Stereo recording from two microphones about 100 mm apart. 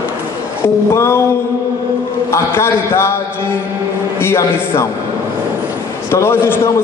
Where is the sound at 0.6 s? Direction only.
25° left (ahead or behind).